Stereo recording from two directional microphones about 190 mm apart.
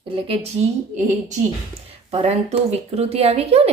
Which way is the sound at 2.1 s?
35° right (ahead or behind).